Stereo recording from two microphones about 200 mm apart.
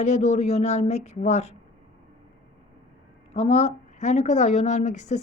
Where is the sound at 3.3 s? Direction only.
30° left (ahead or behind).